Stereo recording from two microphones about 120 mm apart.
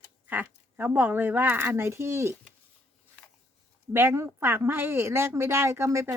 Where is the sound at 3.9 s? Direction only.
20° right (ahead or behind).